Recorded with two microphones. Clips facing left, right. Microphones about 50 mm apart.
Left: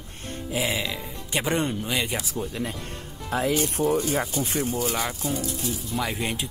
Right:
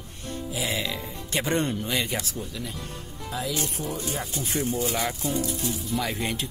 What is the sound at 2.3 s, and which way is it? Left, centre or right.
Speech, left.